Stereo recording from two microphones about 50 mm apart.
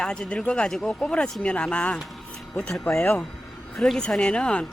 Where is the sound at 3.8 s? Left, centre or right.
Centre.